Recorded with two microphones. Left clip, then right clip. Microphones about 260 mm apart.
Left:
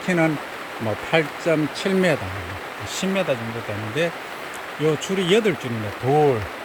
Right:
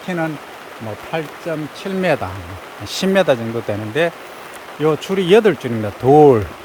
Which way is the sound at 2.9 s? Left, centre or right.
Centre.